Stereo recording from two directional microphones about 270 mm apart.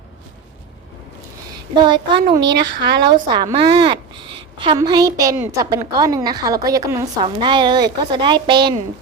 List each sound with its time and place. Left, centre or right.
1.7 s a woman's voice: centre
2.4 s speech: right
3.1 s a woman's voice: centre